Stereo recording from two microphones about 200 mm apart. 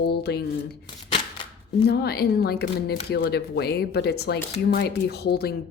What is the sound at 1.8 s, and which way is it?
Speech, 50° left (ahead or behind).